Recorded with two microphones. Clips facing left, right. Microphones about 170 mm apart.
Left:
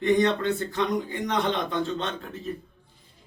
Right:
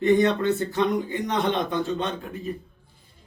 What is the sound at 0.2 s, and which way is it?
A man's voice, 20° right (ahead or behind).